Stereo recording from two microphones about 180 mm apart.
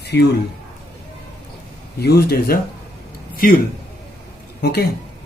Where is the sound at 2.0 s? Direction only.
65° left (ahead or behind).